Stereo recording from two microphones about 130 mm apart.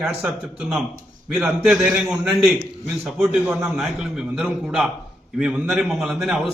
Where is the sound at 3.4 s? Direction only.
15° right (ahead or behind).